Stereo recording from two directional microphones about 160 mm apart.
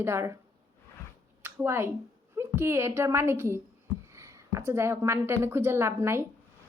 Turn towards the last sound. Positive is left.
turn(degrees=-15)  # may be behind; listen again after turning